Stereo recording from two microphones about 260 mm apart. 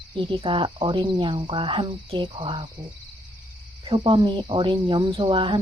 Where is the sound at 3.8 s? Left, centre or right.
Centre.